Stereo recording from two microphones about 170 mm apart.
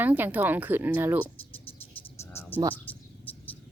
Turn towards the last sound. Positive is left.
turn(degrees=10)  # may be behind; listen again after turning